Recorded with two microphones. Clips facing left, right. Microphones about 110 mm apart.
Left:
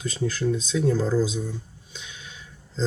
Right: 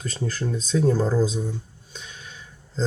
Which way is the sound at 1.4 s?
35° right (ahead or behind).